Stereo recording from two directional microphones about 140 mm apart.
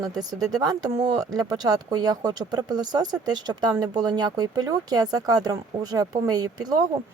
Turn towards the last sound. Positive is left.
turn(degrees=-25)  # may be behind; listen again after turning